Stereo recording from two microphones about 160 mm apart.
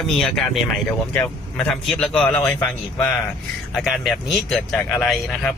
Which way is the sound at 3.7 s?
Centre (ahead or behind).